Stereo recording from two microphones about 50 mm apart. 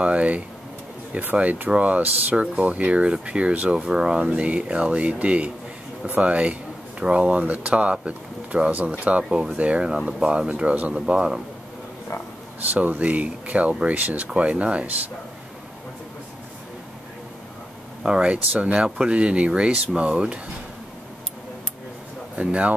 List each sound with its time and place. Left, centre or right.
0.0 s speech: right
12.6 s speech: right
18.0 s speech: centre
22.3 s speech: right